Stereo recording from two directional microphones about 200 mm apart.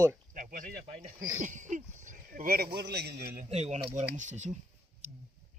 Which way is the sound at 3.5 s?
30° right (ahead or behind).